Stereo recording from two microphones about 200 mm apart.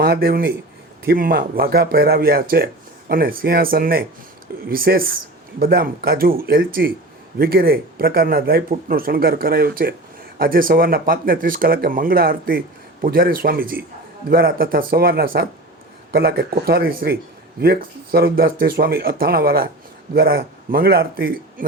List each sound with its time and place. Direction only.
0.0 s speech: 50° right (ahead or behind)